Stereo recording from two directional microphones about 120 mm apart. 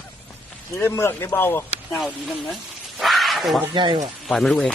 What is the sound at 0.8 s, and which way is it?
Speech, 20° left (ahead or behind).